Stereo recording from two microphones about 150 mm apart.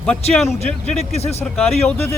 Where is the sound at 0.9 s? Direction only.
45° left (ahead or behind).